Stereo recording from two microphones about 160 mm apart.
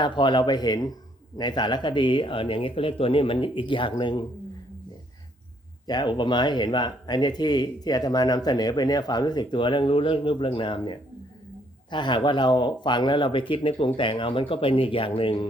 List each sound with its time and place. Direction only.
0.0 s speech: 30° left (ahead or behind)
5.9 s speech: 30° left (ahead or behind)